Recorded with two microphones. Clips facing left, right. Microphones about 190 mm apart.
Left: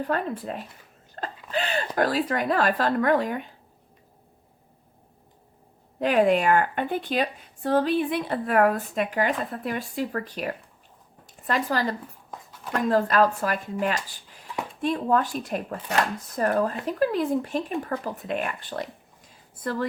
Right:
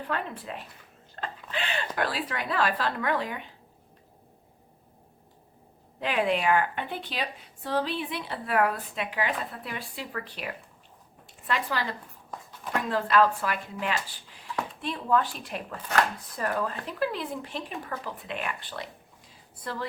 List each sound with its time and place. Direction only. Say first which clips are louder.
0.0 s speech: left 6 dB; 40° left (ahead or behind)
1.1 s a sound: left 6 dB; 40° left (ahead or behind)
2.0 s speech: left 8 dB; 45° left (ahead or behind)
6.0 s speech: left 6 dB; 45° left (ahead or behind)